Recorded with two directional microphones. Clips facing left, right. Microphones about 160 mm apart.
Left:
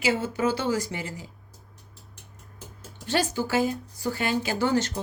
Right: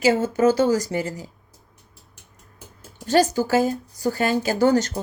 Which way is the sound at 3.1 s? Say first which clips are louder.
Right 7 dB; 40° right (ahead or behind).